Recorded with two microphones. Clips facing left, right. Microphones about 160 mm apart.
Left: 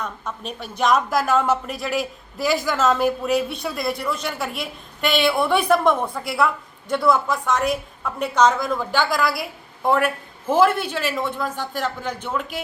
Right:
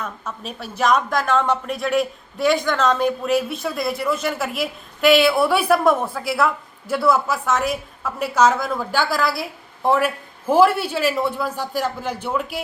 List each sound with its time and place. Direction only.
0.0 s speech: 5° right (ahead or behind)
9.1 s a woman's voice: 30° right (ahead or behind)
9.8 s a man's voice: 5° right (ahead or behind)